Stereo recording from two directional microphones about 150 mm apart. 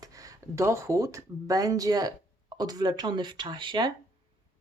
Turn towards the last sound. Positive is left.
turn(degrees=-30)  # may be behind; listen again after turning